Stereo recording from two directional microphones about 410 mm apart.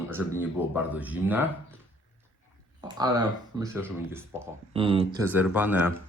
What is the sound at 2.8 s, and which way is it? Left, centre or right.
Speech, centre.